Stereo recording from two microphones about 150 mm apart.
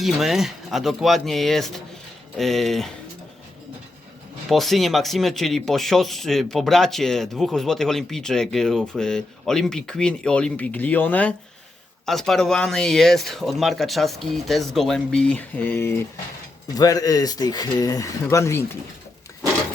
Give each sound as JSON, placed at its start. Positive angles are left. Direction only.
{"t": 0.0, "sound": "speech", "side_deg": 0}
{"t": 4.4, "sound": "speech", "side_deg": 0}